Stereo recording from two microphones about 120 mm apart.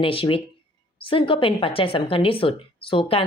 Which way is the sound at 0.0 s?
50° left (ahead or behind).